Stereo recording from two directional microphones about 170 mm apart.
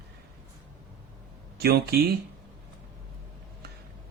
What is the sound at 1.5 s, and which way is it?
Speech, 65° right (ahead or behind).